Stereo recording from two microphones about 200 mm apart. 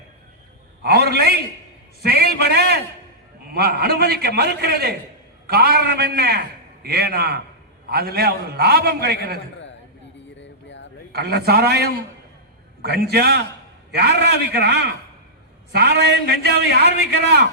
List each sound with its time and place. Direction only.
0.8 s a man's voice: 50° right (ahead or behind)
10.3 s a sound: 65° left (ahead or behind)
11.1 s a man's voice: 55° right (ahead or behind)